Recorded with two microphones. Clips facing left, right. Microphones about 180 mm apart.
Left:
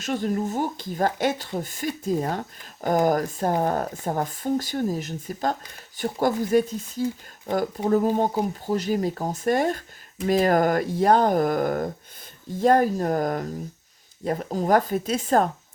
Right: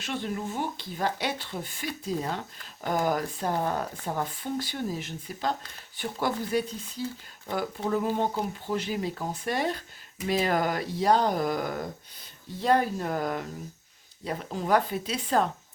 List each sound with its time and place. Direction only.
0.0 s speech: 45° left (ahead or behind)